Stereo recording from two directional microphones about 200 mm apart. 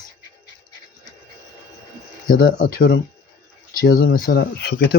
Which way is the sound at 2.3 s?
45° left (ahead or behind).